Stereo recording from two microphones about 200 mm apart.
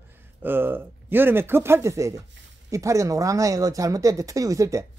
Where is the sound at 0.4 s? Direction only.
10° right (ahead or behind).